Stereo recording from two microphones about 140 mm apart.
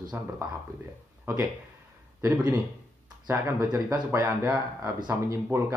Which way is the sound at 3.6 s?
30° right (ahead or behind).